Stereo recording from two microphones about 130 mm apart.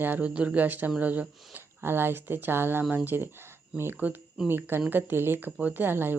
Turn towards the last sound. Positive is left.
turn(degrees=-15)  # may be behind; listen again after turning